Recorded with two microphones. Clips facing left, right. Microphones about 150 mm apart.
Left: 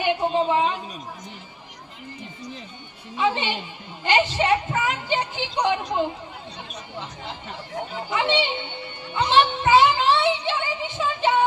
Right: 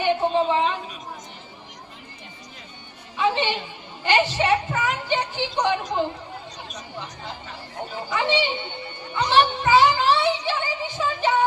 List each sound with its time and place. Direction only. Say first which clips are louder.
0.0 s a woman's voice: right 1 dB; 15° left (ahead or behind)
3.2 s a woman's voice: right 1 dB; 15° left (ahead or behind)
8.1 s a child's voice: even; 20° left (ahead or behind)
9.1 s music: even; 20° left (ahead or behind)